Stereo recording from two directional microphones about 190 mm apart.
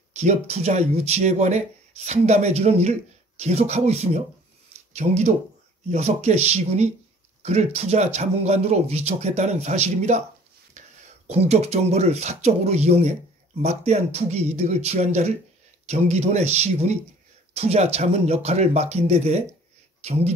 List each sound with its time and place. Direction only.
0.1 s speech: 35° right (ahead or behind)